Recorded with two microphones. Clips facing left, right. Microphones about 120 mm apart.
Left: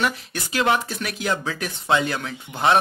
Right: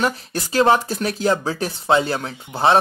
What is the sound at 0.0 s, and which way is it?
Speech, 35° right (ahead or behind).